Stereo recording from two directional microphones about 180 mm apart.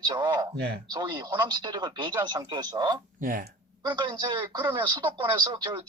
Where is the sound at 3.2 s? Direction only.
50° right (ahead or behind).